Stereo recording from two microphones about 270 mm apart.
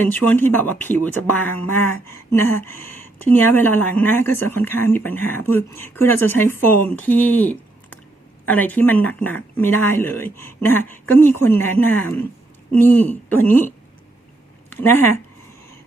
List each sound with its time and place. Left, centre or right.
0.0 s speech: centre
14.7 s speech: centre